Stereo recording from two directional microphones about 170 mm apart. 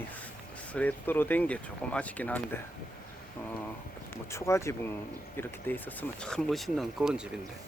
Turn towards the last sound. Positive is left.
turn(degrees=0)  # may be behind; listen again after turning